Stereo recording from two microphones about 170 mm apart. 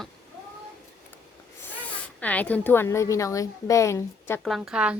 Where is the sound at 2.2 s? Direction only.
10° left (ahead or behind).